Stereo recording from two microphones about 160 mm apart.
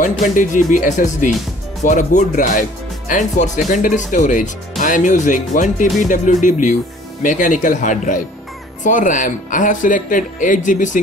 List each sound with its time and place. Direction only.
0.2 s speech: 55° left (ahead or behind)